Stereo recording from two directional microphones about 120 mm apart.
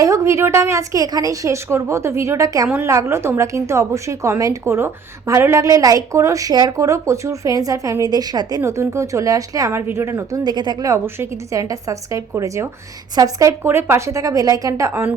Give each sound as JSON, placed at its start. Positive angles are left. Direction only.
{"t": 0.0, "sound": "a woman's voice", "side_deg": -25}
{"t": 10.9, "sound": "a woman's voice", "side_deg": -20}